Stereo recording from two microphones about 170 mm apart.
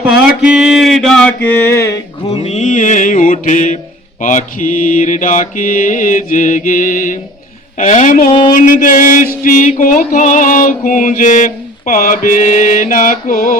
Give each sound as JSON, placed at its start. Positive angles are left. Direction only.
{"t": 0.0, "sound": "mantra", "side_deg": -5}
{"t": 2.3, "sound": "mantra", "side_deg": 40}